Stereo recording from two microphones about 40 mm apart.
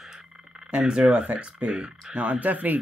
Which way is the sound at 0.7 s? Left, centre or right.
Right.